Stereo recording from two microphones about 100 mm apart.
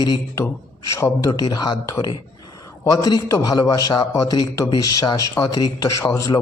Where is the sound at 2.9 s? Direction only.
40° left (ahead or behind).